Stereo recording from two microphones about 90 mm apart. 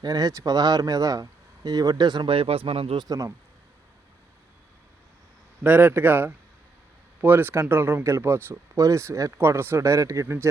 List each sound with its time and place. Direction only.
0.0 s speech: 45° right (ahead or behind)
2.3 s speech: 90° right
3.0 s speech: 40° right (ahead or behind)
5.6 s speech: 20° right (ahead or behind)